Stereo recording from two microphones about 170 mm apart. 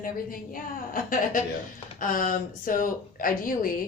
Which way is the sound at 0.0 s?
55° left (ahead or behind).